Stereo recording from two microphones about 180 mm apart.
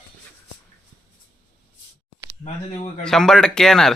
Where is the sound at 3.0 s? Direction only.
5° left (ahead or behind).